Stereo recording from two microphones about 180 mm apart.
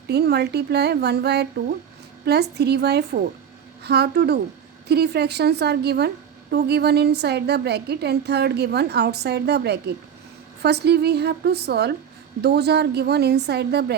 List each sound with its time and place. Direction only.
0.1 s a woman's voice: 65° right (ahead or behind)